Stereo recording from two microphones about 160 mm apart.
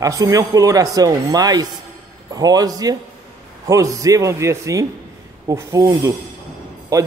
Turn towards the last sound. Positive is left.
turn(degrees=-20)  # may be behind; listen again after turning